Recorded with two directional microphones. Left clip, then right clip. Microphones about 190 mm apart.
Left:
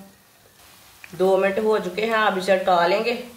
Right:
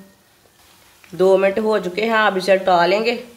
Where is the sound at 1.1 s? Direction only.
55° right (ahead or behind).